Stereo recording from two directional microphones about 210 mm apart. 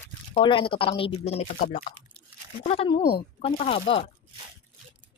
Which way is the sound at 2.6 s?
25° left (ahead or behind).